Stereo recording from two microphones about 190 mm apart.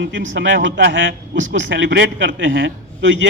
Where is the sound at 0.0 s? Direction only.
75° right (ahead or behind).